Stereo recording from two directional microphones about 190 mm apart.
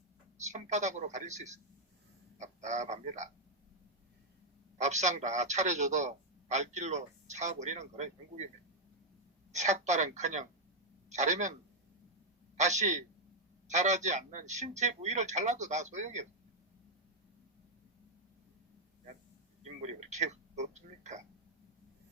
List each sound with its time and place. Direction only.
0.4 s a man's voice: 40° right (ahead or behind)
4.8 s a man's voice: 40° right (ahead or behind)
9.5 s a man's voice: 40° right (ahead or behind)
12.5 s a man's voice: 40° right (ahead or behind)
19.6 s speech: 35° right (ahead or behind)